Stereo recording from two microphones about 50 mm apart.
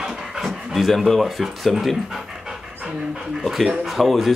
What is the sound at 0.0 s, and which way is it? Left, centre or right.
Pant, centre.